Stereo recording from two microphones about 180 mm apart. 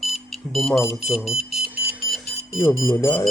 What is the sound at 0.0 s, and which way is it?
Smoke detector, centre (ahead or behind).